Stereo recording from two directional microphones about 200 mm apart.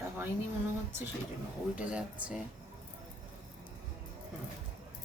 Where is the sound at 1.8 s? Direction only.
5° right (ahead or behind).